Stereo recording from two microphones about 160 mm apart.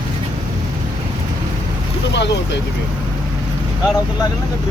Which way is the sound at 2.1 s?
90° left.